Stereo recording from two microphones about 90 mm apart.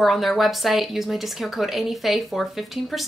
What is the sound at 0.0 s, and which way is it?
Speech, centre (ahead or behind).